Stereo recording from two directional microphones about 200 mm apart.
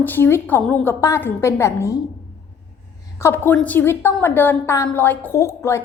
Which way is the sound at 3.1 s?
10° left (ahead or behind).